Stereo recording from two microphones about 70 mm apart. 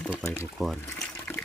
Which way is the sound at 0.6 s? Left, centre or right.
Centre.